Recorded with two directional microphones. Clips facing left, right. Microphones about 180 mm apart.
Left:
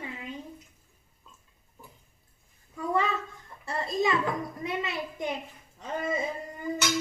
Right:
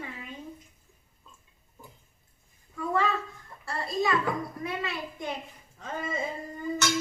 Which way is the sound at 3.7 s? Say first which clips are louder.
Left 1 dB; 20° left (ahead or behind).